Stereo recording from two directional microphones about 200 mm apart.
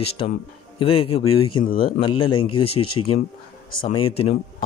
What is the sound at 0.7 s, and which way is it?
Speech, 30° left (ahead or behind).